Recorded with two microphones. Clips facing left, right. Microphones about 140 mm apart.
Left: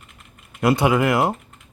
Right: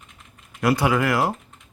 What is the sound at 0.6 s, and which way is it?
Speech, 25° left (ahead or behind).